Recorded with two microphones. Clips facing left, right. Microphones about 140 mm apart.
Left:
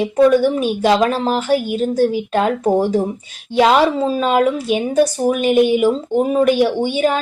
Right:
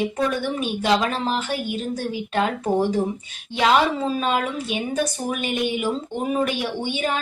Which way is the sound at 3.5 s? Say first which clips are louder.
Left 6 dB; 40° left (ahead or behind).